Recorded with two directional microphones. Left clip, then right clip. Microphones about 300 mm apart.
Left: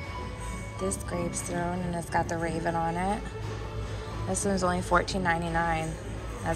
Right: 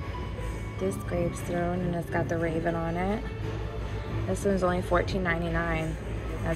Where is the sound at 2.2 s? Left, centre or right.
Centre.